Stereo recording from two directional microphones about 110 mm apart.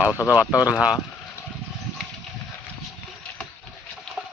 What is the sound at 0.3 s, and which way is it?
Speech, 10° right (ahead or behind).